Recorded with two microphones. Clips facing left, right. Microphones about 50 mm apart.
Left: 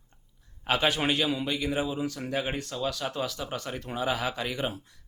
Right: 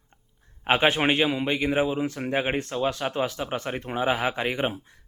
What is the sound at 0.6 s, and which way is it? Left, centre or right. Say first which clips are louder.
A man's voice: right 5 dB; right.